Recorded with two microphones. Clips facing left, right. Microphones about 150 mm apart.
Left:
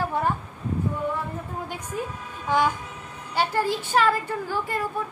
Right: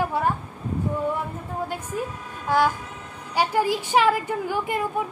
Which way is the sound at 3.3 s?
10° right (ahead or behind).